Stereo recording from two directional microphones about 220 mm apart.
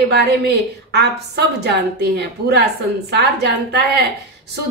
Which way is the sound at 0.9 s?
50° right (ahead or behind).